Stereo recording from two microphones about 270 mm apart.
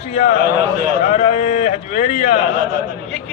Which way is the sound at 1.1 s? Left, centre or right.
Left.